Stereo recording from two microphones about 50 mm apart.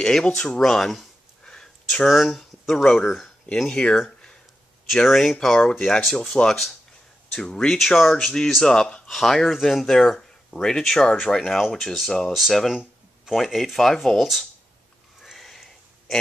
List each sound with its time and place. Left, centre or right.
0.0 s speech: centre
0.6 s a sound: centre
2.0 s speech: centre
3.7 s speech: centre
4.9 s speech: centre
7.4 s speech: centre
7.7 s speech: centre
9.1 s speech: centre
15.1 s a sound: centre